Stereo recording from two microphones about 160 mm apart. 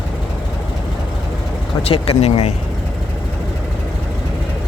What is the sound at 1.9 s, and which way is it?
Speech, 40° left (ahead or behind).